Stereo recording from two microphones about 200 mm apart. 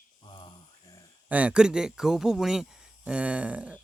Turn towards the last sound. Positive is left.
turn(degrees=-5)  # may be behind; listen again after turning